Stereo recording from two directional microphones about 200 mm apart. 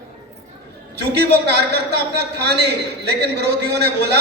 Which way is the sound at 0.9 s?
55° right (ahead or behind).